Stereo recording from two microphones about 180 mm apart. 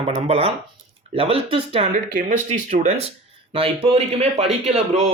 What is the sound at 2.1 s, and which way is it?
Speech, 40° right (ahead or behind).